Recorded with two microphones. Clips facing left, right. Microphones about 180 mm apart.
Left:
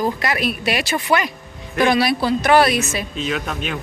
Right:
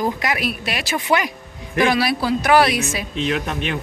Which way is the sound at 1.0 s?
15° right (ahead or behind).